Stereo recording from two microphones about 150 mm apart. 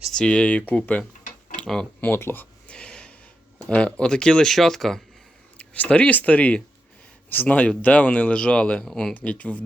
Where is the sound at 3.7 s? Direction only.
5° left (ahead or behind).